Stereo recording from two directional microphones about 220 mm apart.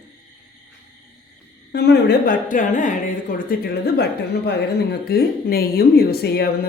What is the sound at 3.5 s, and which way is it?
A woman's voice, 45° left (ahead or behind).